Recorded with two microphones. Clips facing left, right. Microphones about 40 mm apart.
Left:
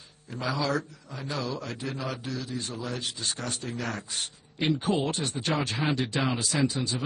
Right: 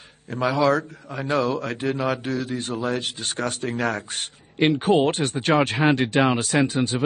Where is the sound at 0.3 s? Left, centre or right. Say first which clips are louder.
Right 9 dB; right.